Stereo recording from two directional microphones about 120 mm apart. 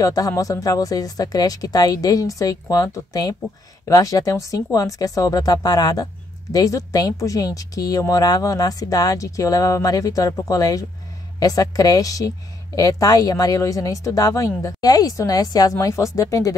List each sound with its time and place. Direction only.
0.0 s a woman's voice: 30° left (ahead or behind)